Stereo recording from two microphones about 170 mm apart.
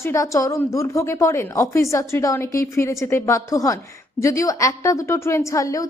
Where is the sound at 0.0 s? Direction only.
20° left (ahead or behind).